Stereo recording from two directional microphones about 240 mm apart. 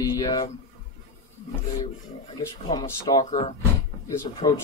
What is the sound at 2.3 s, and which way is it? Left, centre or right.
Speech, centre.